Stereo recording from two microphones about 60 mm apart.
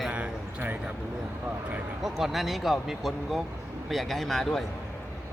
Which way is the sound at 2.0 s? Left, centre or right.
Centre.